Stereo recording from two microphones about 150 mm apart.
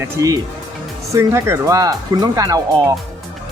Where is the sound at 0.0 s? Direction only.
20° right (ahead or behind).